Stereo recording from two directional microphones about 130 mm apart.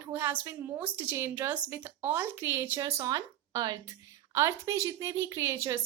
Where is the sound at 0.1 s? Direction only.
15° right (ahead or behind).